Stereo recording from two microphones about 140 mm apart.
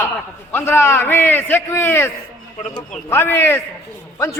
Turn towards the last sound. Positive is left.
turn(degrees=20)  # may be behind; listen again after turning